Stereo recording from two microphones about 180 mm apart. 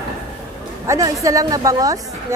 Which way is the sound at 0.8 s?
15° right (ahead or behind).